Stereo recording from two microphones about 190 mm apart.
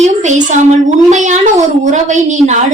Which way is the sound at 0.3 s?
40° right (ahead or behind).